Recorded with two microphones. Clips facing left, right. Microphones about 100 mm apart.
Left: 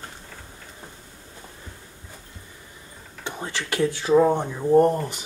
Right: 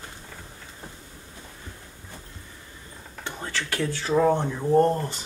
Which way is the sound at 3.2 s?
15° left (ahead or behind).